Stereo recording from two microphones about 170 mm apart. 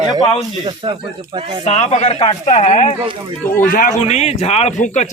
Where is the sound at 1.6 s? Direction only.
40° left (ahead or behind).